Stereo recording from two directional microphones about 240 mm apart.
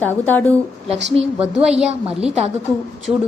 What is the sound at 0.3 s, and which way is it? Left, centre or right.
Speech, centre.